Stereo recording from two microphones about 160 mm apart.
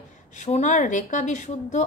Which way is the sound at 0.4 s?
50° left (ahead or behind).